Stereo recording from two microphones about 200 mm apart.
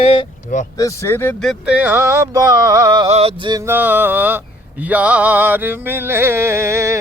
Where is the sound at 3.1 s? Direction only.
30° right (ahead or behind).